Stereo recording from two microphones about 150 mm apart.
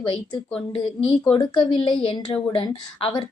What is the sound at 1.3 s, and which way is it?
A woman's voice, 30° left (ahead or behind).